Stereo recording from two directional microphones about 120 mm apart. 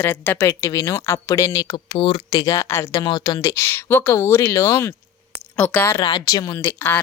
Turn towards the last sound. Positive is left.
turn(degrees=20)  # may be behind; listen again after turning